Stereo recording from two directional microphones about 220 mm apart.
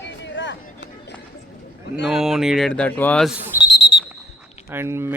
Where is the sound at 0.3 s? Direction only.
55° left (ahead or behind).